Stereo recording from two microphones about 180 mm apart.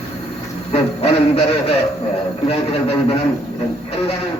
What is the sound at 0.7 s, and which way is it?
A man's voice, 35° left (ahead or behind).